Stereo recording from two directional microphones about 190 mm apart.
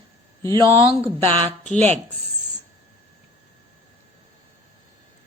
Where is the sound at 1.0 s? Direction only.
10° left (ahead or behind).